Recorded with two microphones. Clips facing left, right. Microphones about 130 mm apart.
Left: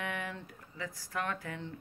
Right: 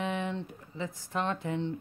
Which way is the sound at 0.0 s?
20° right (ahead or behind).